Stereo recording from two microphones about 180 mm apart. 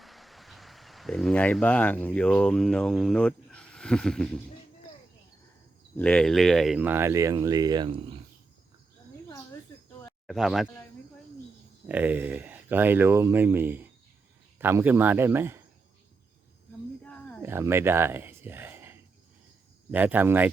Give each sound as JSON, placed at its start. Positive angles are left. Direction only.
{"t": 0.0, "sound": "speech", "side_deg": 0}
{"t": 6.0, "sound": "speech", "side_deg": 5}
{"t": 6.7, "sound": "speech", "side_deg": -10}
{"t": 10.2, "sound": "speech", "side_deg": 0}
{"t": 11.9, "sound": "speech", "side_deg": -10}
{"t": 17.0, "sound": "wild animals", "side_deg": 10}
{"t": 17.4, "sound": "speech", "side_deg": -15}